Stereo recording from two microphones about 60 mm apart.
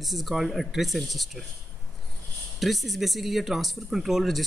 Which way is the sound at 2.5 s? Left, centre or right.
Centre.